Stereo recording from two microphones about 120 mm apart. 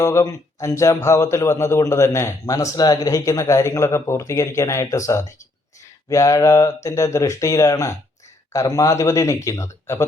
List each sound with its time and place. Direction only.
0.0 s speech: 25° left (ahead or behind)